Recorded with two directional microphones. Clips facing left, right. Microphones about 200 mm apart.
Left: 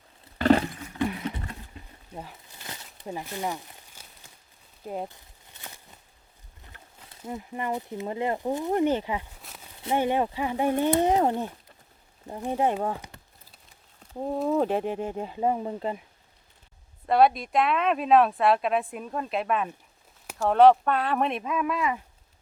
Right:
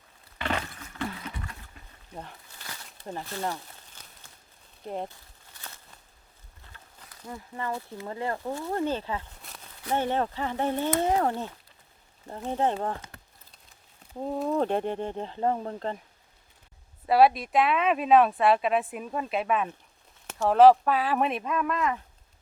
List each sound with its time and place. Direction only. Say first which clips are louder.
0.3 s water: left 11 dB; 35° left (ahead or behind)
0.9 s clip-clop: left 6 dB; 20° left (ahead or behind)
2.6 s a sound: left 4 dB; 20° left (ahead or behind)
5.0 s walk: even; 20° left (ahead or behind)
6.7 s speech: left 1 dB; 20° left (ahead or behind)
9.4 s a sound: left 1 dB; 5° left (ahead or behind)
9.9 s speech: left 2 dB; 15° left (ahead or behind)
14.1 s speech: left 2 dB; 5° left (ahead or behind)
17.1 s speech: even; 5° right (ahead or behind)